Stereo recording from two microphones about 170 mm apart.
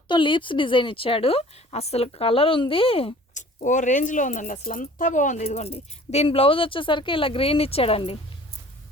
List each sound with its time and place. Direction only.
0.1 s speech: 30° left (ahead or behind)
3.6 s speech: 45° left (ahead or behind)